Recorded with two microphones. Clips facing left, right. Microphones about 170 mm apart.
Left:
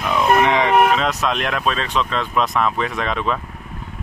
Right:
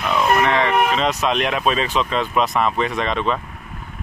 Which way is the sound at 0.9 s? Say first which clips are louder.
Right 1 dB; centre (ahead or behind).